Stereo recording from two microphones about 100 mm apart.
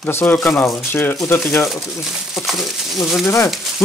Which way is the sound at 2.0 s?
Centre (ahead or behind).